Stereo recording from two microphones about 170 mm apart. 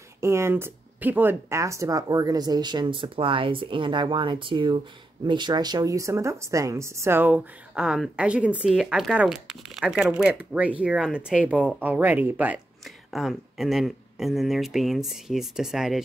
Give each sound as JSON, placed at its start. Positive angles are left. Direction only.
{"t": 0.2, "sound": "speech", "side_deg": -15}